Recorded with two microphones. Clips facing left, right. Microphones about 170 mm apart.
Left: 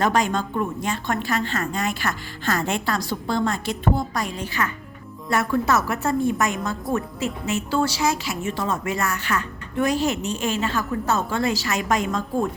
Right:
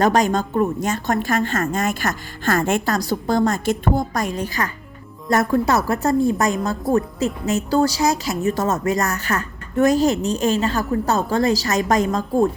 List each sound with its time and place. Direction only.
0.0 s a woman's voice: 40° right (ahead or behind)